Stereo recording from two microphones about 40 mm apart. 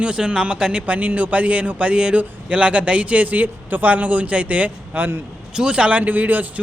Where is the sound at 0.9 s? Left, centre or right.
Right.